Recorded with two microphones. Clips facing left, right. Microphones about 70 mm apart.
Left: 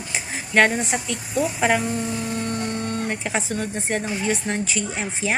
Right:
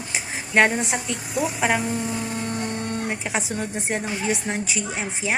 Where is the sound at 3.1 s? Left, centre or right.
Centre.